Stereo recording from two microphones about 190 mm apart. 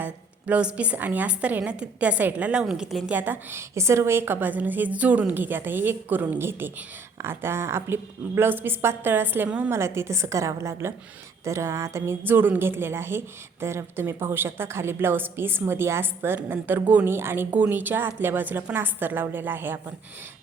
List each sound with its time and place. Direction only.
0.0 s a woman's voice: 5° right (ahead or behind)